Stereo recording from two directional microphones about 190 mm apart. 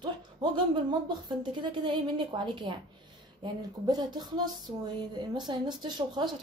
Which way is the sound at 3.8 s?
20° right (ahead or behind).